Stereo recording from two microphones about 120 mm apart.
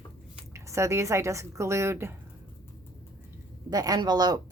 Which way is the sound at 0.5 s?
25° right (ahead or behind).